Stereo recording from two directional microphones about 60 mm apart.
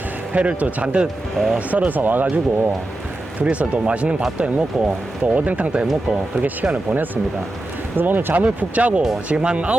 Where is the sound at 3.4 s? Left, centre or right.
Right.